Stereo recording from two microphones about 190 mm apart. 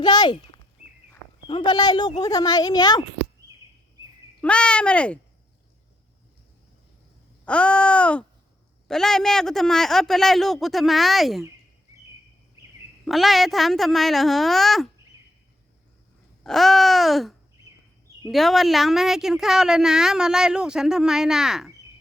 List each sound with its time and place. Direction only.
0.0 s speech: 20° left (ahead or behind)
4.4 s speech: 5° left (ahead or behind)
7.4 s a woman's voice: 5° left (ahead or behind)
13.1 s a woman's voice: centre (ahead or behind)
16.4 s a woman's voice: centre (ahead or behind)